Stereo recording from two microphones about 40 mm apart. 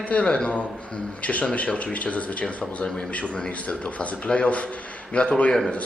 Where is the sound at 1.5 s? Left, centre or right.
Left.